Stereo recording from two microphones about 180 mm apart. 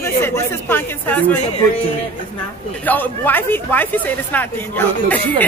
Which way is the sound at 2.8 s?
10° left (ahead or behind).